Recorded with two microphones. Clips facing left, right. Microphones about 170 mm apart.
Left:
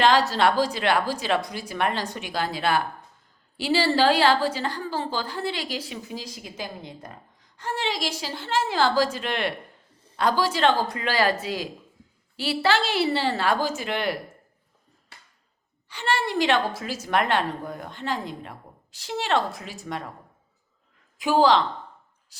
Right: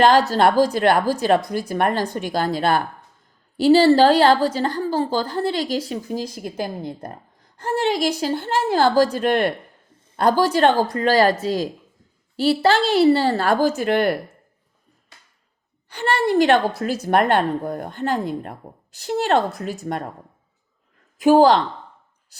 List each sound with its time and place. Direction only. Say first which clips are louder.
0.0 s a woman's voice: right 5 dB; 45° right (ahead or behind)
15.9 s a woman's voice: right 6 dB; 55° right (ahead or behind)
21.2 s a woman's voice: right 6 dB; 45° right (ahead or behind)